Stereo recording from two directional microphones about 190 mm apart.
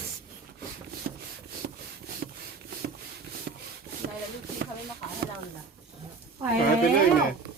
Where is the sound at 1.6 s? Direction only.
55° right (ahead or behind).